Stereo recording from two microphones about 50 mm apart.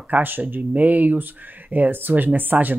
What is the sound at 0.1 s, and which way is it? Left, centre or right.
Speech, right.